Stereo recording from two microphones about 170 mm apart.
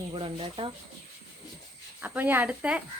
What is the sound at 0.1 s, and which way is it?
Speech, 30° right (ahead or behind).